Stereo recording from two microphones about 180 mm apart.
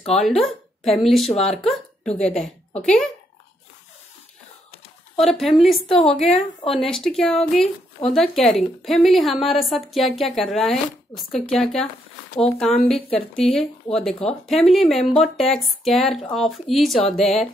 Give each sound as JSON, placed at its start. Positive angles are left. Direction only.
{"t": 0.2, "sound": "a woman's voice", "side_deg": 0}
{"t": 5.1, "sound": "a woman's voice", "side_deg": 0}
{"t": 6.2, "sound": "a woman's voice", "side_deg": 30}
{"t": 6.8, "sound": "a woman's voice", "side_deg": 0}